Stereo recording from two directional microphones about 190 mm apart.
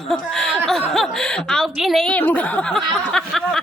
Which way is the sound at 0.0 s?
5° left (ahead or behind).